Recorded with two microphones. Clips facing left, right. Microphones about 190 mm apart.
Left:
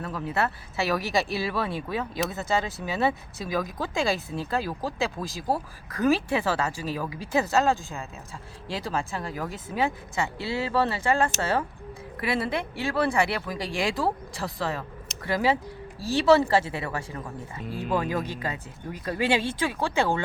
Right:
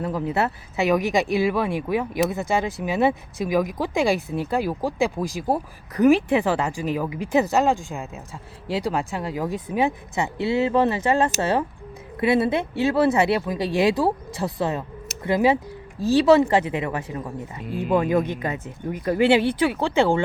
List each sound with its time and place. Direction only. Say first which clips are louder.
0.0 s speech: right 5 dB; 25° right (ahead or behind)
18.4 s speech: right 6 dB; 20° right (ahead or behind)